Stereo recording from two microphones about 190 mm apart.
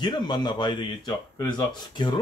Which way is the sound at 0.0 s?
25° left (ahead or behind).